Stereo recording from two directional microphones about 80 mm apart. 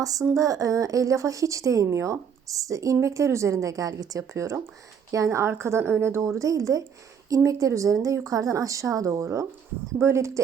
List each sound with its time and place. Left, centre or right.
0.0 s a woman's voice: right